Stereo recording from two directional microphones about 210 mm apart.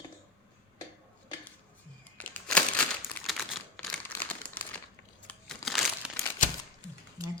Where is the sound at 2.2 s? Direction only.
5° left (ahead or behind).